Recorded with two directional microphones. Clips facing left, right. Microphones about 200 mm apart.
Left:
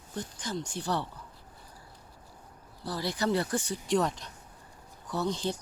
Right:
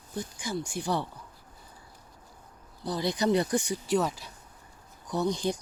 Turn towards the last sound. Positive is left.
turn(degrees=-15)  # may be behind; listen again after turning